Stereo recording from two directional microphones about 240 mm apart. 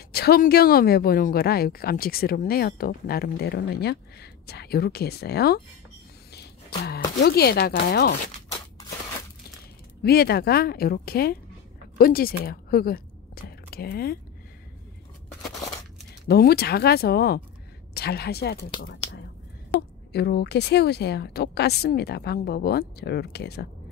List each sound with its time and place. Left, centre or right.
0.1 s a woman's voice: left
8.5 s a sound: centre
10.0 s a woman's voice: left
16.3 s a woman's voice: left
20.1 s speech: left